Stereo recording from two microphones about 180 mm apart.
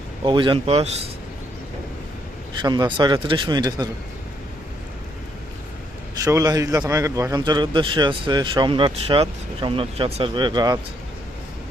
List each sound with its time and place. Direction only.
0.3 s speech: 25° right (ahead or behind)
2.6 s a man's voice: 25° right (ahead or behind)
6.1 s a man's voice: 20° right (ahead or behind)